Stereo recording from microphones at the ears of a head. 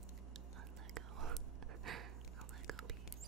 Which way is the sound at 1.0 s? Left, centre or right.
Right.